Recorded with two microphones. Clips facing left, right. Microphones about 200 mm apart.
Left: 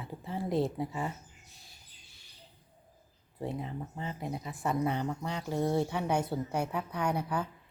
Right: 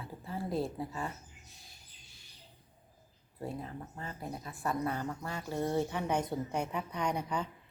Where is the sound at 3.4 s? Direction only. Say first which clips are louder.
Left 3 dB; 20° left (ahead or behind).